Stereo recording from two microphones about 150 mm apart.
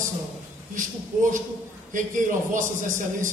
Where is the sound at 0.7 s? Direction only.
60° right (ahead or behind).